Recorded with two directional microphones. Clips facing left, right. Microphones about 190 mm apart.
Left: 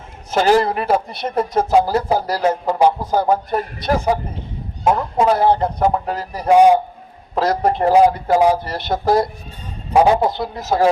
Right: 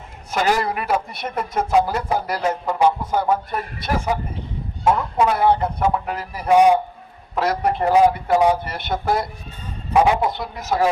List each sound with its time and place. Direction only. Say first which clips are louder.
0.3 s speech: left 6 dB; 30° left (ahead or behind)
4.9 s speech: left 3 dB; 30° left (ahead or behind)